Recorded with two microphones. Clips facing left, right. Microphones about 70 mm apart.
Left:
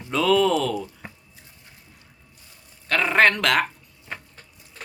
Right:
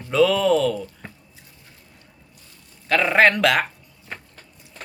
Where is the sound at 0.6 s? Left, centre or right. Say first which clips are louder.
Right 3 dB; centre.